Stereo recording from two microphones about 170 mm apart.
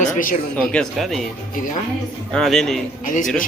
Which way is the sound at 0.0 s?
50° left (ahead or behind).